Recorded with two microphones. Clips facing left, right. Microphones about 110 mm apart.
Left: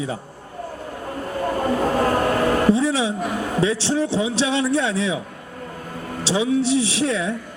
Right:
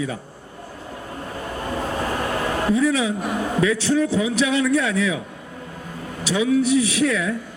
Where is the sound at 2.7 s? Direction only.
30° left (ahead or behind).